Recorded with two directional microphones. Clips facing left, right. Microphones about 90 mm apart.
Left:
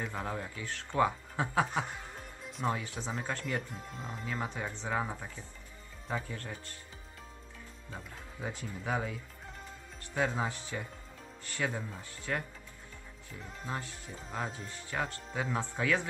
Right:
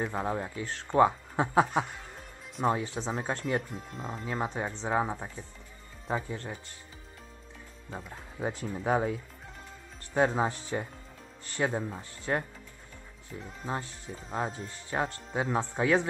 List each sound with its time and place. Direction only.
0.0 s speech: 30° right (ahead or behind)
3.7 s speech: centre (ahead or behind)
4.3 s speech: 30° right (ahead or behind)
7.9 s speech: 35° right (ahead or behind)
10.1 s speech: 35° right (ahead or behind)
13.4 s speech: centre (ahead or behind)
13.7 s speech: 30° right (ahead or behind)